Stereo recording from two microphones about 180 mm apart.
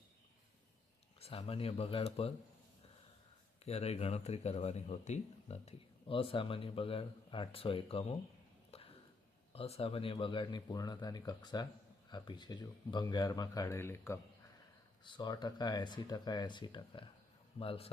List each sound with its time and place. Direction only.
1.2 s speech: 35° left (ahead or behind)
3.6 s speech: 35° left (ahead or behind)
8.7 s a sound: 35° left (ahead or behind)
9.5 s speech: 35° left (ahead or behind); by 14.2 s 15° left (ahead or behind)
15.0 s speech: 25° left (ahead or behind)